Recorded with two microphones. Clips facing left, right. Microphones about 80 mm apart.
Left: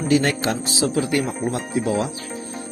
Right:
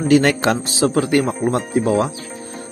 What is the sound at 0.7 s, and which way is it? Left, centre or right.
Speech, right.